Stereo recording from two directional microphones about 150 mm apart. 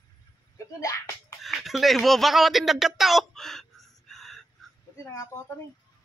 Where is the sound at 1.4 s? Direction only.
Centre (ahead or behind).